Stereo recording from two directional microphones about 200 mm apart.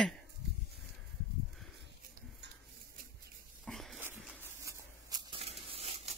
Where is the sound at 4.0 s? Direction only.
10° right (ahead or behind).